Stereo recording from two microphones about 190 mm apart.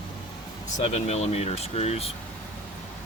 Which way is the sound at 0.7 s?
35° left (ahead or behind).